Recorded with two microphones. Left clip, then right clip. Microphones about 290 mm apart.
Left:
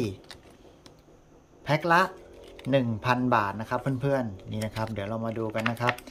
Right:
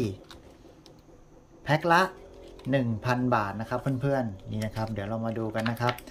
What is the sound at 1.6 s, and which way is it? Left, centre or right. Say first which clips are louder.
Speech: even; centre.